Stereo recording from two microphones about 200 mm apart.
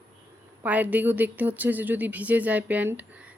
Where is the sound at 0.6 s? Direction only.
5° right (ahead or behind).